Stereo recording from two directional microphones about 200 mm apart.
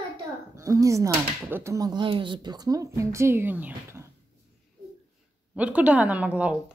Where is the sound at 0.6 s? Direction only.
15° right (ahead or behind).